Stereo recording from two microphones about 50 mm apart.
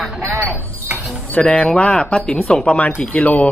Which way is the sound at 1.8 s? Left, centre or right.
Centre.